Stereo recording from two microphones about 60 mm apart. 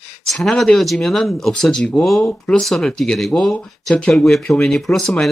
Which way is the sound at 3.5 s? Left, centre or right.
Centre.